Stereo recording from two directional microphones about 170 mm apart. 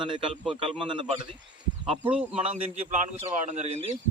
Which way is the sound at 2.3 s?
40° right (ahead or behind).